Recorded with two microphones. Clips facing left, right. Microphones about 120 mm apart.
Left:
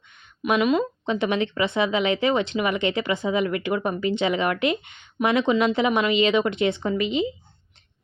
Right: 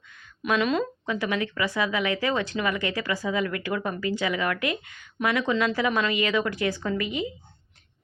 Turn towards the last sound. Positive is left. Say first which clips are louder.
# left 5 dB
turn(degrees=20)  # may be behind; listen again after turning